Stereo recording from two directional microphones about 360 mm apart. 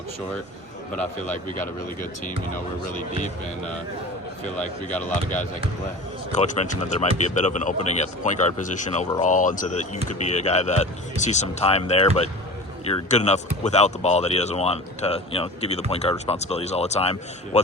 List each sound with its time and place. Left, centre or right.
6.3 s speech: centre